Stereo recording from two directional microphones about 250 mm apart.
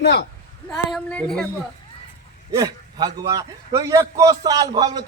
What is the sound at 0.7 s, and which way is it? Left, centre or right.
Speech, centre.